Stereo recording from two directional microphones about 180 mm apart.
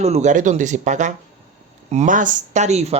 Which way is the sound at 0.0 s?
40° right (ahead or behind).